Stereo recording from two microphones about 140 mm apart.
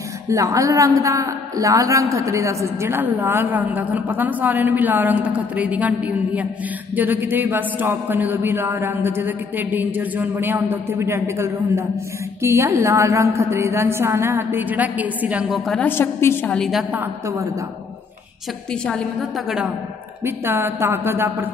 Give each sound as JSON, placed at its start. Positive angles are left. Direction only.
{"t": 0.3, "sound": "a man's voice", "side_deg": -25}
{"t": 15.8, "sound": "a woman's voice", "side_deg": 15}
{"t": 16.5, "sound": "a woman's voice", "side_deg": 0}
{"t": 16.9, "sound": "a woman's voice", "side_deg": -20}
{"t": 18.7, "sound": "a woman's voice", "side_deg": 5}
{"t": 20.2, "sound": "a man's voice", "side_deg": -15}